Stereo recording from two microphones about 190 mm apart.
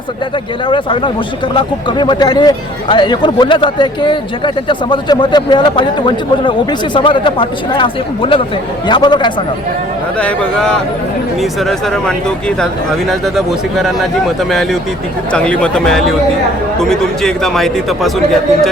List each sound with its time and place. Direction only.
0.7 s speech: 25° left (ahead or behind)
10.2 s speech: 5° left (ahead or behind)